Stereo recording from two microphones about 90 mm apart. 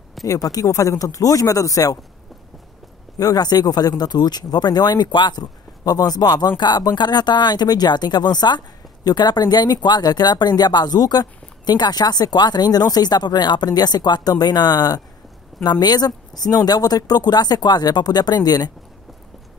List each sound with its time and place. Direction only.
0.2 s speech: 45° left (ahead or behind)
3.2 s speech: 45° left (ahead or behind)